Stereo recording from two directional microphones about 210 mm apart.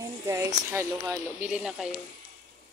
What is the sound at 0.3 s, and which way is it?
A woman's voice, 15° right (ahead or behind).